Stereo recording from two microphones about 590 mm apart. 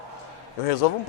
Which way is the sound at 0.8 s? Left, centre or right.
Left.